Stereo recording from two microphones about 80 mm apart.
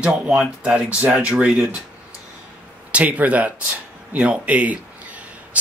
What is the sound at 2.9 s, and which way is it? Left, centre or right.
Speech, centre.